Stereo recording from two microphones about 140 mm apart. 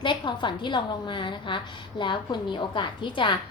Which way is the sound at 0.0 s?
35° left (ahead or behind).